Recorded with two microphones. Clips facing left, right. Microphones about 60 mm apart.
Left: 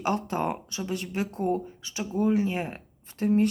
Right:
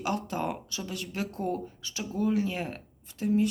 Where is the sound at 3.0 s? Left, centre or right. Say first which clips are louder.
Left 3 dB; left.